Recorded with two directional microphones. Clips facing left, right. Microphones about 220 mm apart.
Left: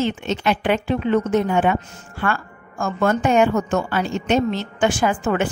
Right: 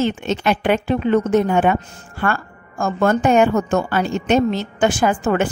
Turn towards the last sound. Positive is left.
turn(degrees=-40)  # may be behind; listen again after turning